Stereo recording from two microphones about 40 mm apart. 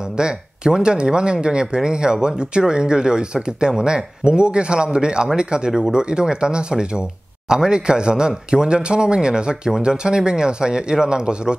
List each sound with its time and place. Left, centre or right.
0.2 s speech: right